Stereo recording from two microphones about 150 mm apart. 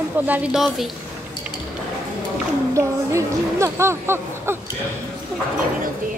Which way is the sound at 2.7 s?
20° right (ahead or behind).